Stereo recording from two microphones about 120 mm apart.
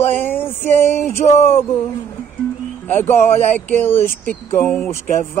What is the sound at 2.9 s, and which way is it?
Speech, 15° left (ahead or behind).